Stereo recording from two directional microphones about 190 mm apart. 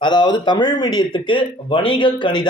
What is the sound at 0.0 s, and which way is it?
Speech, 25° left (ahead or behind).